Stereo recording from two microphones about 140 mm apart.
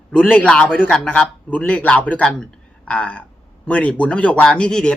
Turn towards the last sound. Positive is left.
turn(degrees=5)  # may be behind; listen again after turning